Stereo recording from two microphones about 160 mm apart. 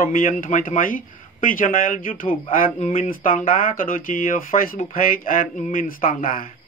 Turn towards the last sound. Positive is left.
turn(degrees=60)  # may be behind; listen again after turning